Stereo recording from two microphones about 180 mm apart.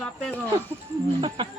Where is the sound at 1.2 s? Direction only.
30° right (ahead or behind).